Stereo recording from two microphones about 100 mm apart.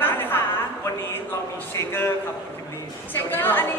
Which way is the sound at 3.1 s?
20° left (ahead or behind).